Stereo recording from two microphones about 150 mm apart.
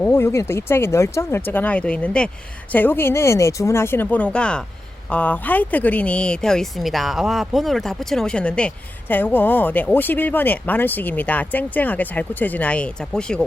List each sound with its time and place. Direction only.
0.0 s speech: 15° left (ahead or behind)